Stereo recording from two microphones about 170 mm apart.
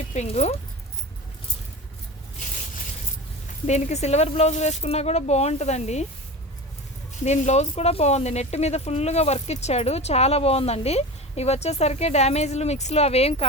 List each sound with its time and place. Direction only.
0.1 s speech: 40° left (ahead or behind)
3.7 s speech: 45° left (ahead or behind)
7.3 s speech: 40° left (ahead or behind)